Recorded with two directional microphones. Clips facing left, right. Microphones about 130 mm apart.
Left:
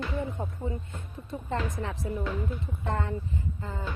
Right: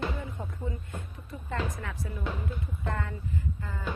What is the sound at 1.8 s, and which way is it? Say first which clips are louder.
Music: left 4 dB; 25° left (ahead or behind).